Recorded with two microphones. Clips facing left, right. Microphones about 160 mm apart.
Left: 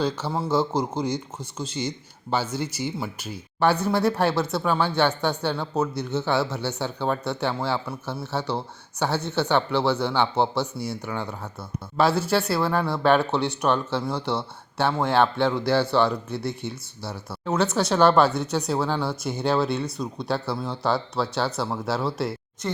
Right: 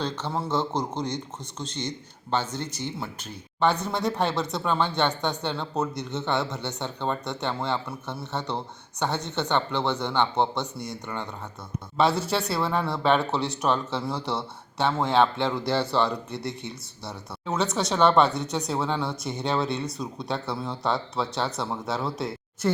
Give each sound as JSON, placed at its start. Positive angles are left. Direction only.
{"t": 0.0, "sound": "speech", "side_deg": 5}